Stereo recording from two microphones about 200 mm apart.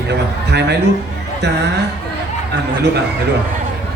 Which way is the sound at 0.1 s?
55° right (ahead or behind).